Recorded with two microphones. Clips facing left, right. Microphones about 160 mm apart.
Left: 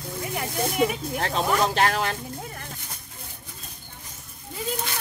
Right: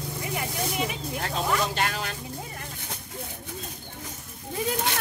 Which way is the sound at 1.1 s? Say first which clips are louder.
Left 3 dB; 65° left (ahead or behind).